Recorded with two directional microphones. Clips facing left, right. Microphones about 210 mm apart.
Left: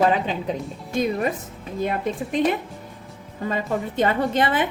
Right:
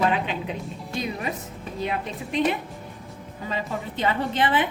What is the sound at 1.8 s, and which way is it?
Speech, 50° left (ahead or behind).